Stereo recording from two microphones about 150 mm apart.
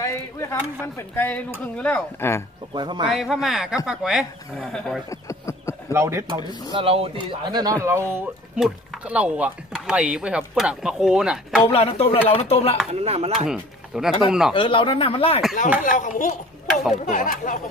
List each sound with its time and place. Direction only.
0.0 s speech: 20° left (ahead or behind)
2.7 s speech: 30° right (ahead or behind)
3.1 s speech: centre (ahead or behind)
5.1 s a sound: 20° left (ahead or behind)
5.9 s speech: 20° right (ahead or behind)
6.8 s speech: 40° right (ahead or behind); by 11.6 s 5° right (ahead or behind)
11.6 s speech: 40° left (ahead or behind)
13.0 s chopping: 45° right (ahead or behind)
13.5 s speech: 5° right (ahead or behind)
14.5 s speech: 35° left (ahead or behind)
15.8 s speech: 60° left (ahead or behind)